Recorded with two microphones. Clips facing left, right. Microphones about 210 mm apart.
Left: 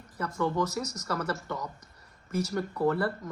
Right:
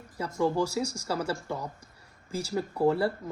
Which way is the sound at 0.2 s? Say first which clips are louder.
Right 2 dB; 30° right (ahead or behind).